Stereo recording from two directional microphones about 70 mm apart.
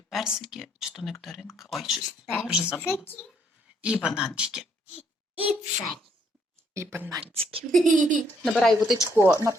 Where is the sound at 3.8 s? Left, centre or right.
Centre.